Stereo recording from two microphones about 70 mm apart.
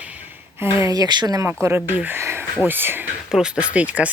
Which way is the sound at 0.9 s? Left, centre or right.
Right.